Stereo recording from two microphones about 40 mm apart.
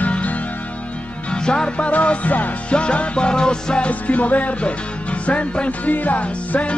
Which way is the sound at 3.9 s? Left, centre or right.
Left.